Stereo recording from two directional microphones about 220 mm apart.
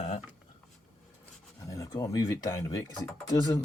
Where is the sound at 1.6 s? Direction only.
15° left (ahead or behind).